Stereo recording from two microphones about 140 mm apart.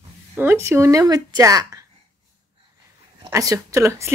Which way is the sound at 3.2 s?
20° right (ahead or behind).